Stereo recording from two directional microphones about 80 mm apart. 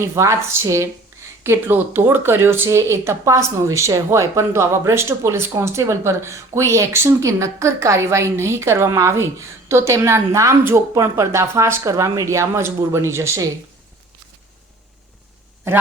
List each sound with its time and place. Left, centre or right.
0.0 s a woman's voice: right